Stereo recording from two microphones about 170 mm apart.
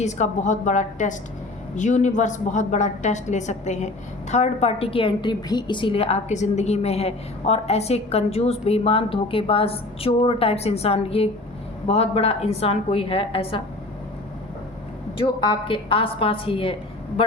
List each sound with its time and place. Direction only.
0.0 s a woman's voice: 45° left (ahead or behind)
15.2 s a woman's voice: 30° left (ahead or behind)